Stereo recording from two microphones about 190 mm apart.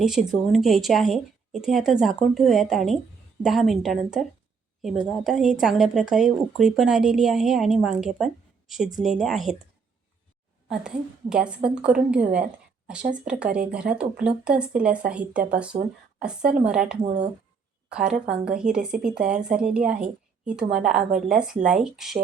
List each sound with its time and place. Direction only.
0.0 s speech: 5° right (ahead or behind)
10.7 s speech: 5° right (ahead or behind)
15.0 s speech: 50° right (ahead or behind)
15.7 s speech: 40° right (ahead or behind)
16.2 s speech: 5° right (ahead or behind)
17.0 s speech: 35° right (ahead or behind)
17.9 s speech: 5° right (ahead or behind)